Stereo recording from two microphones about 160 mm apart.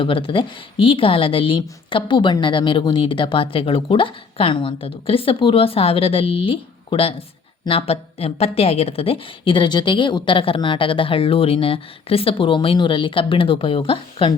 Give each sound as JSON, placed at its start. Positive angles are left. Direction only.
{"t": 0.0, "sound": "a woman's voice", "side_deg": 35}